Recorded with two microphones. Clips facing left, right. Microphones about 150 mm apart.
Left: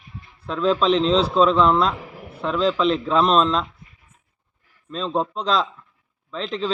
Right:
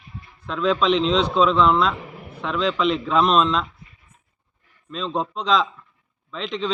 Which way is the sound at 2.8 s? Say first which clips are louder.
Left 1 dB; 35° left (ahead or behind).